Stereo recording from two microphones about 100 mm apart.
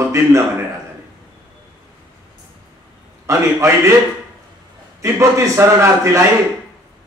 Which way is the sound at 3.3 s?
30° right (ahead or behind).